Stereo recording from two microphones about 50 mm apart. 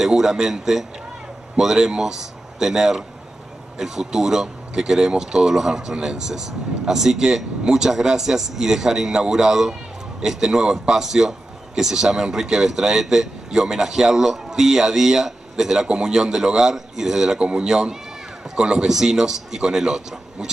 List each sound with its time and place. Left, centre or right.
0.0 s a man's voice: centre